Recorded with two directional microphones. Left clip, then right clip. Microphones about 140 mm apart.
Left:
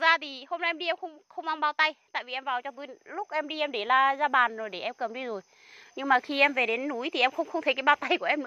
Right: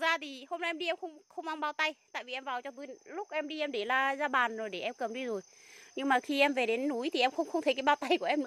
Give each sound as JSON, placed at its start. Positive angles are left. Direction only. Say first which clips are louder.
{"t": 0.0, "sound": "speech", "louder": "left 7 dB", "side_deg": -25}
{"t": 2.8, "sound": "speech", "louder": "left 5 dB", "side_deg": -5}
{"t": 3.4, "sound": "speech", "louder": "left 7 dB", "side_deg": -15}